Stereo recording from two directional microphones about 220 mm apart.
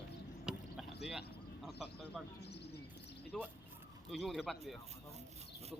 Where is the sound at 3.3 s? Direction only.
5° left (ahead or behind).